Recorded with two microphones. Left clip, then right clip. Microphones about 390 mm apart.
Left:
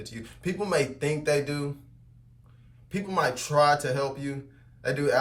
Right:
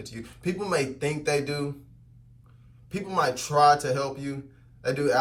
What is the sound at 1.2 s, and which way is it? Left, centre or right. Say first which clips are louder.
Speech: even; left.